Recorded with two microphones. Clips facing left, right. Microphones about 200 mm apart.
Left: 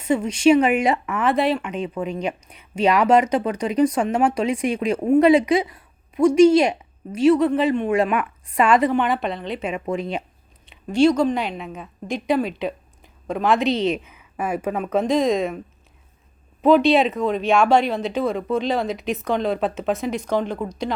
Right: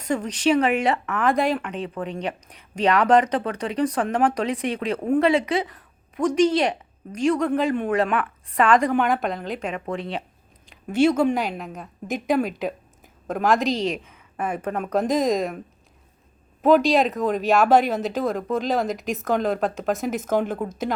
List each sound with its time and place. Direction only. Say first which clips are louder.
0.0 s speech: left 5 dB; 5° left (ahead or behind)
2.7 s speech: left 1 dB; 10° left (ahead or behind)
7.9 s speech: left 2 dB; 10° left (ahead or behind)
10.8 s speech: left 2 dB; 5° right (ahead or behind)